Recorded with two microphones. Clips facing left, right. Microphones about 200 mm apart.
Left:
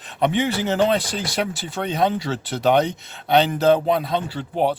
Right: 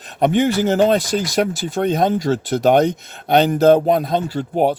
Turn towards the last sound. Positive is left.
turn(degrees=-45)  # may be behind; listen again after turning